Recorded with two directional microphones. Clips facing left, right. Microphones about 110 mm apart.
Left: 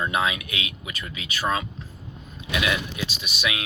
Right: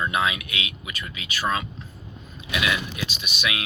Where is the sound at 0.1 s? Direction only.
35° left (ahead or behind).